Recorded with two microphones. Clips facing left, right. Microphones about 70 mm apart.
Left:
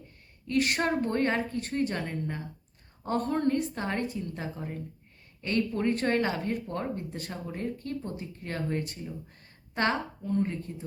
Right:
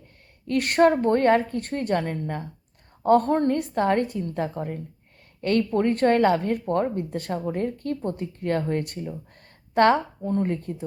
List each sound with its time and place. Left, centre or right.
0.4 s speech: right